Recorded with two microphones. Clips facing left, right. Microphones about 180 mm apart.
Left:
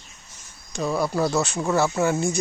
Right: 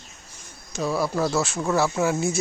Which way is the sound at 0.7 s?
Centre (ahead or behind).